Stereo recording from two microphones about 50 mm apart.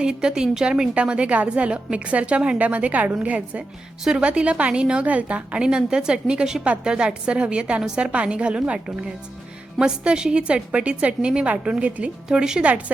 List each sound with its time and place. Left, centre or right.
0.0 s a woman's voice: centre